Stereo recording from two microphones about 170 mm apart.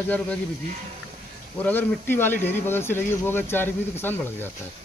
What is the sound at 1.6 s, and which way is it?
Speech, 10° left (ahead or behind).